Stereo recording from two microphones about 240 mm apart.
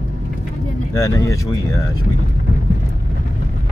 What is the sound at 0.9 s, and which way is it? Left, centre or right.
Speech, centre.